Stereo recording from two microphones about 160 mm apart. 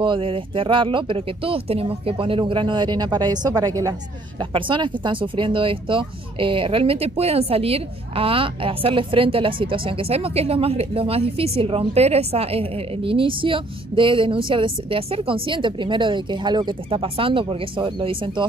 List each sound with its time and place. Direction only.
0.0 s speech: 30° right (ahead or behind)